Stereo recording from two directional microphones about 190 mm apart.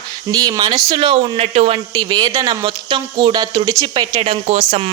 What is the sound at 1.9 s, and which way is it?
Speech, 20° right (ahead or behind).